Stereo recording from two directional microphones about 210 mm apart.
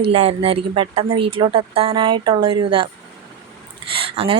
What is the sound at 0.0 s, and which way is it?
Speech, 30° right (ahead or behind).